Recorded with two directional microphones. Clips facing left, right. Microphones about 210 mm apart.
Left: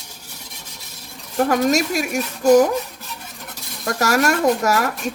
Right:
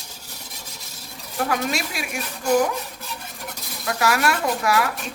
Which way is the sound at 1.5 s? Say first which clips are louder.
Left 9 dB; 45° left (ahead or behind).